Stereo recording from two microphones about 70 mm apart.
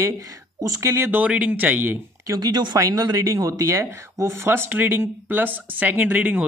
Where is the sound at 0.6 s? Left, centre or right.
Right.